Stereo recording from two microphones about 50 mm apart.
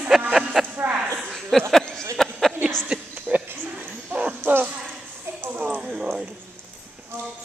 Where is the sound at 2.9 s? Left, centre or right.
Centre.